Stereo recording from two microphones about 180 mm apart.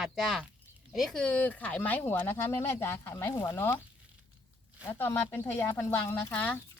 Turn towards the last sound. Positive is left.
turn(degrees=10)  # may be behind; listen again after turning